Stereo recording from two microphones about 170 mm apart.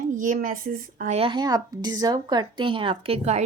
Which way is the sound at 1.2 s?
30° right (ahead or behind).